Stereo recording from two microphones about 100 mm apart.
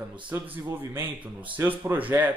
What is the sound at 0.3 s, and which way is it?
A man's voice, 20° right (ahead or behind).